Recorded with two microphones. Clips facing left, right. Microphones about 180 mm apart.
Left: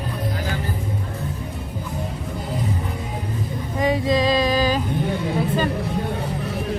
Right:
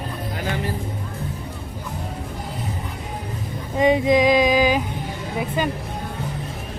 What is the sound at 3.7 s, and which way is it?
Female singing, 20° right (ahead or behind).